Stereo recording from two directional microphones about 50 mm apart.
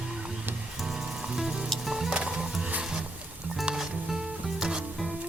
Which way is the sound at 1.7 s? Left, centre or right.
Centre.